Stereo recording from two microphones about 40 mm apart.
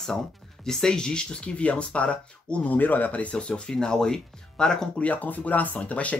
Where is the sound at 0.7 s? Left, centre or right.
Centre.